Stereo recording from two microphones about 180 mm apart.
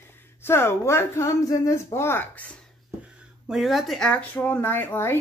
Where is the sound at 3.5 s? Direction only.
Centre (ahead or behind).